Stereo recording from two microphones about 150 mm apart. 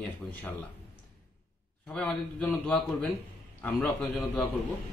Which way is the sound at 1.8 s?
5° left (ahead or behind).